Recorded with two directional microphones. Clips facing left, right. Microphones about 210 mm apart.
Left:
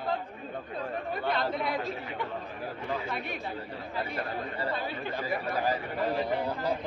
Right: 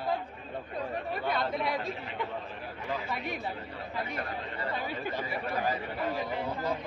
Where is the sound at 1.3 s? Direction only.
Centre (ahead or behind).